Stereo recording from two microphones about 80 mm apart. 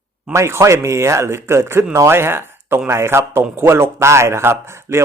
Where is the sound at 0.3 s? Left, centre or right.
Right.